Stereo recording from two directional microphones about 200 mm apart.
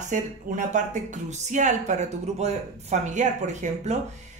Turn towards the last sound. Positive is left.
turn(degrees=-35)  # may be behind; listen again after turning